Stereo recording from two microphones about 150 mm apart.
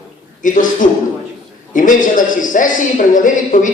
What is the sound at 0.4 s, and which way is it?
A man's voice, 60° left (ahead or behind).